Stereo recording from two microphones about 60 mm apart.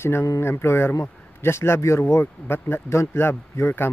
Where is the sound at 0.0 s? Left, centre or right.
Left.